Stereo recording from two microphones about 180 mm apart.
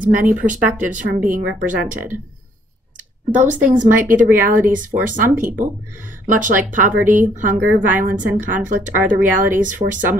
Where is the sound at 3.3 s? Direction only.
45° right (ahead or behind).